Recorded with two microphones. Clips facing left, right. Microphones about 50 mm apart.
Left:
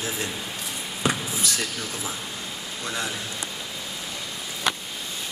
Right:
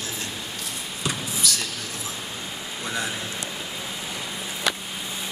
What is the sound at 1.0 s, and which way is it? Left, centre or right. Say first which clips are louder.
Basketball bounce: left 2 dB; left.